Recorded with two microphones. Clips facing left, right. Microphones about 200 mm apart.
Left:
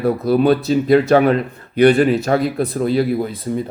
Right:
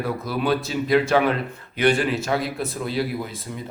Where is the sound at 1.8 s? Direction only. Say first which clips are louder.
Left 8 dB; 55° left (ahead or behind).